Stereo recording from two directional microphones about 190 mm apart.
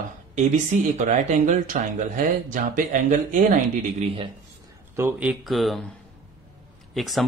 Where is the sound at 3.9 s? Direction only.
30° right (ahead or behind).